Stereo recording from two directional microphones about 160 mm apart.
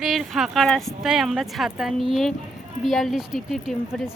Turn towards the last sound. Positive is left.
turn(degrees=0)  # may be behind; listen again after turning